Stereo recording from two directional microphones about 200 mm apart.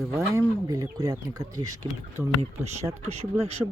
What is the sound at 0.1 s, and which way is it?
Speech, 15° right (ahead or behind).